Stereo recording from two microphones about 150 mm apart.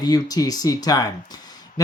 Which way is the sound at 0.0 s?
25° left (ahead or behind).